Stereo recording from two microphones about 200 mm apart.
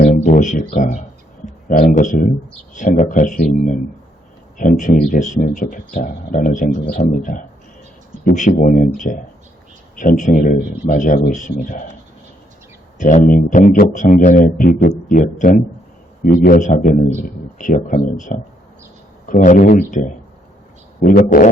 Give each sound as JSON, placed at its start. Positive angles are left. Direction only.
{"t": 0.0, "sound": "a sound", "side_deg": 40}
{"t": 0.6, "sound": "speech", "side_deg": 40}
{"t": 13.0, "sound": "speech", "side_deg": 40}